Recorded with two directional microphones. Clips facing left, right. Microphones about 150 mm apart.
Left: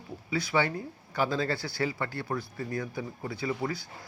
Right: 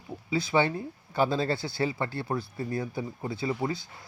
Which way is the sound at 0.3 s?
25° right (ahead or behind).